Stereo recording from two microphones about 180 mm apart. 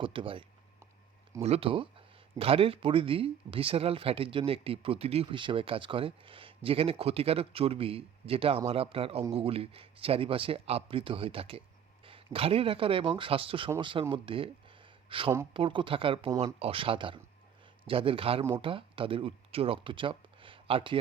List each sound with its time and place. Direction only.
0.0 s speech: 30° right (ahead or behind)